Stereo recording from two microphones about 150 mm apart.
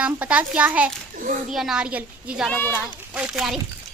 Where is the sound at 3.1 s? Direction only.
5° right (ahead or behind).